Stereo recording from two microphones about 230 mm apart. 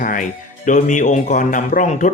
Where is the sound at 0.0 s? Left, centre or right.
Left.